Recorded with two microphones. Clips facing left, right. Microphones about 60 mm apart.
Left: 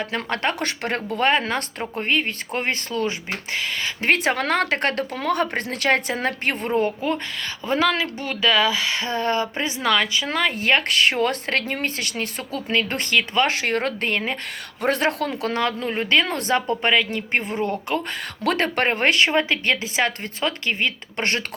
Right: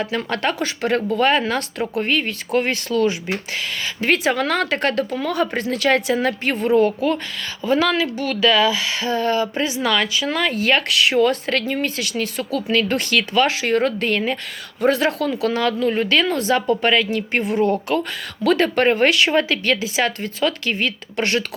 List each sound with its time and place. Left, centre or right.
0.3 s speech: left
13.5 s speech: left
14.8 s speech: left
18.4 s speech: left